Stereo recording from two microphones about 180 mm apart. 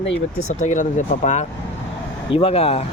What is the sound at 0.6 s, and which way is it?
Speech, 45° left (ahead or behind).